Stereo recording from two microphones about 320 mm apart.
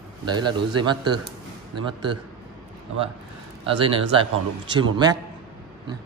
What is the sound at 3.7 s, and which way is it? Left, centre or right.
Speech, centre.